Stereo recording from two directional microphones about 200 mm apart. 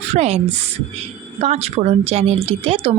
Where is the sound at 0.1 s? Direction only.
35° right (ahead or behind).